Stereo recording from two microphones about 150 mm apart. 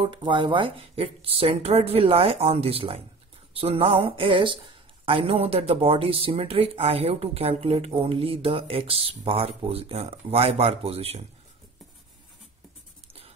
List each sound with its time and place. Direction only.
0.0 s speech: 35° right (ahead or behind)